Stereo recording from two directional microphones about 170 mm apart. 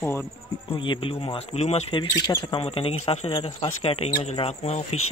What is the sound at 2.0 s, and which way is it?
Speech, 25° left (ahead or behind).